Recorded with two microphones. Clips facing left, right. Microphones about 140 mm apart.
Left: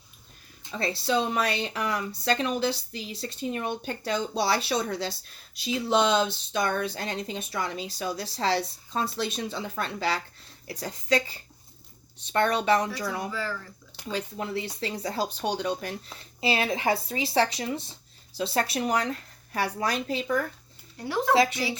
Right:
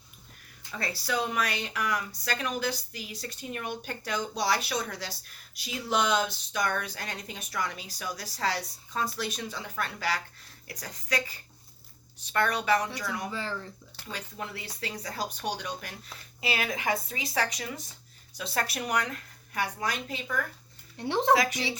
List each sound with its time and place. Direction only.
0.6 s speech: 25° left (ahead or behind)
13.3 s speech: 25° right (ahead or behind)
14.1 s speech: 25° left (ahead or behind)
21.0 s speech: 25° right (ahead or behind)
21.3 s speech: 30° left (ahead or behind)